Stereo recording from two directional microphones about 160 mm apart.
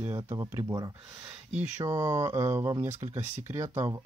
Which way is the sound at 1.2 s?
10° right (ahead or behind).